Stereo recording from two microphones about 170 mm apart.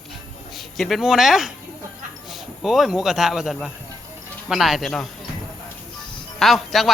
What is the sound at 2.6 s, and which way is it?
Speech, centre (ahead or behind).